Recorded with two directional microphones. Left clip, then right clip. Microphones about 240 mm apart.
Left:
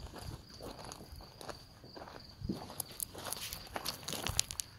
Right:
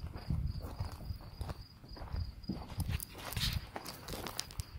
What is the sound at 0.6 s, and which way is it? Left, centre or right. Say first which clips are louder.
Horse: left 5 dB; left.